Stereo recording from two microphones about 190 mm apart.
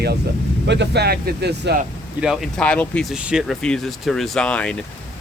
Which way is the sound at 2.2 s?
Centre (ahead or behind).